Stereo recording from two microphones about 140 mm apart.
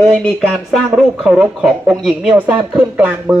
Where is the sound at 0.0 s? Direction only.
Centre (ahead or behind).